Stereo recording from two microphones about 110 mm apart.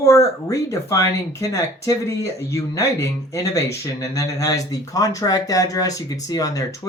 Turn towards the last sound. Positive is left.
turn(degrees=30)  # may be behind; listen again after turning